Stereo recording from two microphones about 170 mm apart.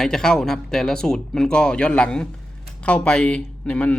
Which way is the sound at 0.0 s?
5° left (ahead or behind).